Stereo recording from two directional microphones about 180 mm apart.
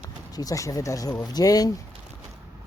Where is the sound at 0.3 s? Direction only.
20° left (ahead or behind).